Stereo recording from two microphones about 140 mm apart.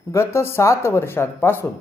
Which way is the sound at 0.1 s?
20° left (ahead or behind).